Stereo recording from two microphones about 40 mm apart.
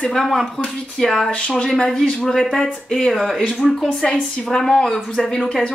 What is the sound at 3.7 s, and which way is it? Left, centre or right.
A woman's voice, left.